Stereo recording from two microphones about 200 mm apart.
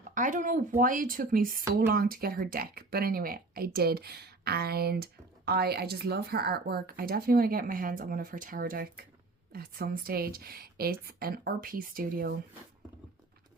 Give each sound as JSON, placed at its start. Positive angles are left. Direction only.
{"t": 0.1, "sound": "speech", "side_deg": -40}